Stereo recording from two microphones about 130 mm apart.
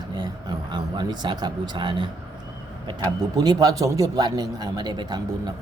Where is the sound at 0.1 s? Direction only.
35° right (ahead or behind).